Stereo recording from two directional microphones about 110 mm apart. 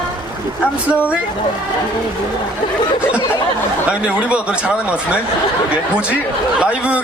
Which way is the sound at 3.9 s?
10° right (ahead or behind).